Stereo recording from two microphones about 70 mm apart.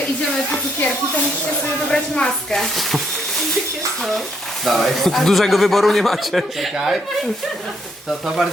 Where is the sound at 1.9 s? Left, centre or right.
Centre.